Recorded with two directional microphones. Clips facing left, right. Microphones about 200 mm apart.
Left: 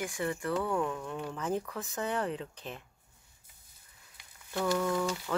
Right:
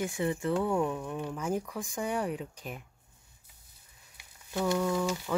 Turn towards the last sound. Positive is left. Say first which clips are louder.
# right 1 dB
turn(degrees=-10)  # may be behind; listen again after turning